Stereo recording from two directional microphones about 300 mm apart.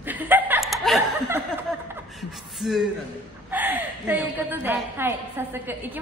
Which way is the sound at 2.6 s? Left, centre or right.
Centre.